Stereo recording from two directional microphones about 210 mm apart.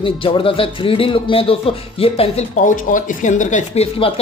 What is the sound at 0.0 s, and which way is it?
Speech, 25° left (ahead or behind).